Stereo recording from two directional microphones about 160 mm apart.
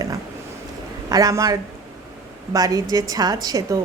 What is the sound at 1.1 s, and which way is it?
A woman's voice, 20° right (ahead or behind).